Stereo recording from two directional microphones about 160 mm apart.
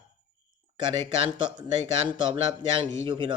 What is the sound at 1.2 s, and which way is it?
A man's voice, 30° right (ahead or behind).